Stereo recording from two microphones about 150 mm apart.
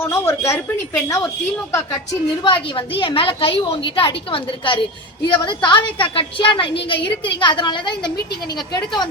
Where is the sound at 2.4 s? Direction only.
35° left (ahead or behind).